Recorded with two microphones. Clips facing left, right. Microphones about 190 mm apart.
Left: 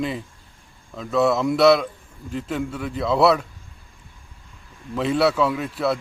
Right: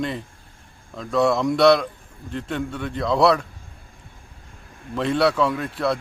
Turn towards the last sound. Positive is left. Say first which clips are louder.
# even
turn(degrees=5)  # may be behind; listen again after turning